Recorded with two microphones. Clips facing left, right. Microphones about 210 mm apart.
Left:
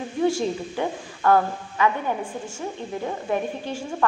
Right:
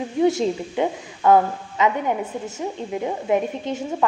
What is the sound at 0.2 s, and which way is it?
A woman's voice, 20° right (ahead or behind).